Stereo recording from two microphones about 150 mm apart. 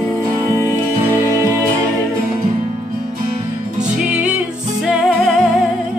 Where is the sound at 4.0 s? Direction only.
10° right (ahead or behind).